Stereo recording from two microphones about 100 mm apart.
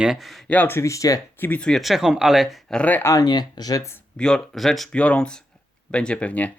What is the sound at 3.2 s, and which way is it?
Speech, 45° left (ahead or behind).